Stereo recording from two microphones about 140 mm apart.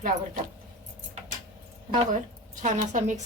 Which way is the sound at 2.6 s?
60° right (ahead or behind).